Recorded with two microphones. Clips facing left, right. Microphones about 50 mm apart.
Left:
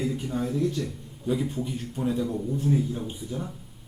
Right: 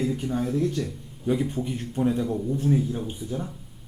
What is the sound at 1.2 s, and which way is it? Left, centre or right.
Speech, centre.